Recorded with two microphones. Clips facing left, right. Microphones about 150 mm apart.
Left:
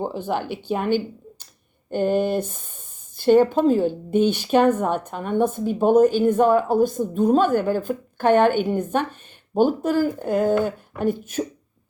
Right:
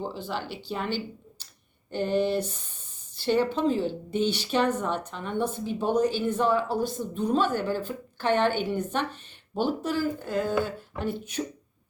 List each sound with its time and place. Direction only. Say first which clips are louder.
0.3 s speech: left 8 dB; 55° left (ahead or behind)